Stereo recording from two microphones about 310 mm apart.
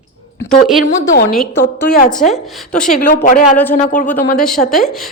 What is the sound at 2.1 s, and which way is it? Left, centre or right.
Speech, centre.